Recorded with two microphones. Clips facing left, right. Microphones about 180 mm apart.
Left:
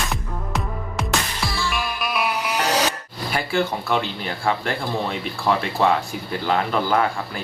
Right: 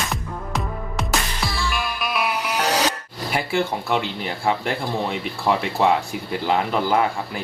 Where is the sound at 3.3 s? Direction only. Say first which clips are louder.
Even; 20° right (ahead or behind).